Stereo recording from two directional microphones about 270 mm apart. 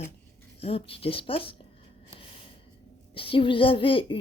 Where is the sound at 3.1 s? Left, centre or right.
Centre.